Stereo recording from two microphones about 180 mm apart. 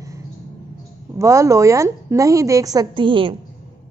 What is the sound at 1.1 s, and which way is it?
A woman's voice, 15° right (ahead or behind).